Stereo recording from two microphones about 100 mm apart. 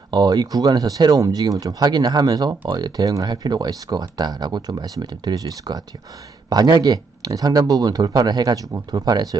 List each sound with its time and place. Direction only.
0.1 s speech: 40° right (ahead or behind)